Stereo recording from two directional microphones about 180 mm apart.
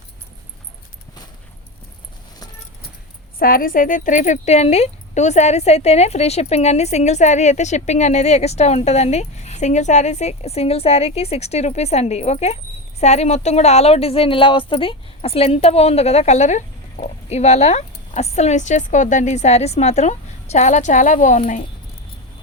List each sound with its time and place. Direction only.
3.3 s speech: 55° left (ahead or behind)